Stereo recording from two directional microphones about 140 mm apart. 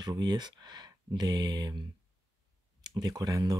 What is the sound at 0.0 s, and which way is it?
Speech, 30° right (ahead or behind).